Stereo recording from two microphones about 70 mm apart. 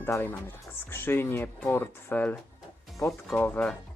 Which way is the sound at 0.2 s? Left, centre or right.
Left.